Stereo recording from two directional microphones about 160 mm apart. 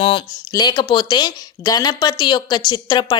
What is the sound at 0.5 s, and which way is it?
A woman's voice, 25° left (ahead or behind).